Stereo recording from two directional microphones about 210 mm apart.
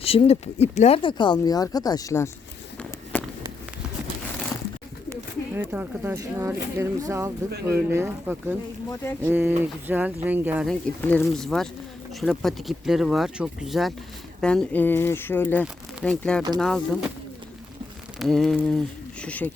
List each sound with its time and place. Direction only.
0.0 s speech: 30° left (ahead or behind)
2.7 s walk: 10° left (ahead or behind)
5.5 s speech: 10° right (ahead or behind)
10.7 s speech: 5° left (ahead or behind)
18.2 s speech: centre (ahead or behind)